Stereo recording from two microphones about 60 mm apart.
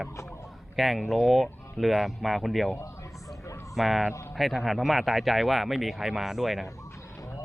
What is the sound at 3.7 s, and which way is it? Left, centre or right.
Speech, centre.